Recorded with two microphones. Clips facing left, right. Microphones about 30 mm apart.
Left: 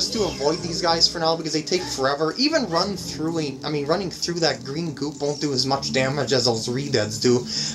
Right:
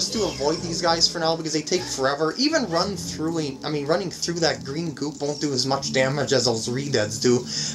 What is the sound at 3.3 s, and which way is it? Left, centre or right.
Speech, centre.